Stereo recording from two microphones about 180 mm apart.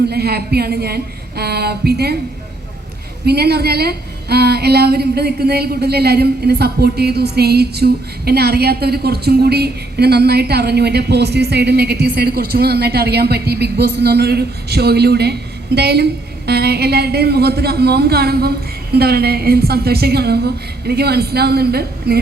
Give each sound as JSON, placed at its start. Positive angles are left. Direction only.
{"t": 0.1, "sound": "a woman's voice", "side_deg": -60}
{"t": 3.2, "sound": "a woman's voice", "side_deg": -60}